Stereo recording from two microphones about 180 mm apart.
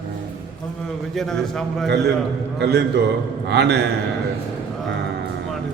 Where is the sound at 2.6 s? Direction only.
70° right (ahead or behind).